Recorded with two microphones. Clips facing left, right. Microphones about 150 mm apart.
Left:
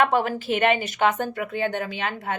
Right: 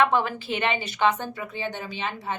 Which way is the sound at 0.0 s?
45° left (ahead or behind).